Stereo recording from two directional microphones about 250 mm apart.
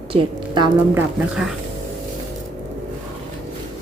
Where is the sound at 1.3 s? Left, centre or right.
Centre.